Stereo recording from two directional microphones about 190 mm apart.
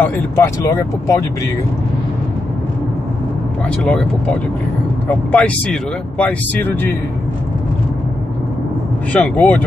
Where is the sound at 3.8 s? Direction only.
5° left (ahead or behind).